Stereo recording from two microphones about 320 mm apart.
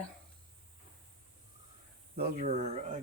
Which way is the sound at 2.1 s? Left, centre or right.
Right.